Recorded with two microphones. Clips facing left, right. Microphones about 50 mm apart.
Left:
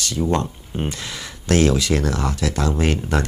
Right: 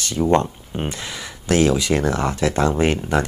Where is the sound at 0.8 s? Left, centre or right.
Centre.